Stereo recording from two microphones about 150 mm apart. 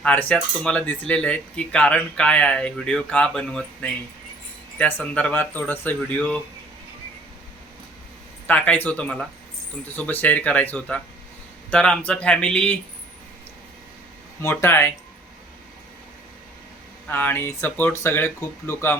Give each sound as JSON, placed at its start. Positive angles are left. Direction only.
{"t": 0.0, "sound": "speech", "side_deg": 10}
{"t": 8.4, "sound": "speech", "side_deg": 10}
{"t": 14.4, "sound": "speech", "side_deg": 15}
{"t": 17.1, "sound": "speech", "side_deg": 10}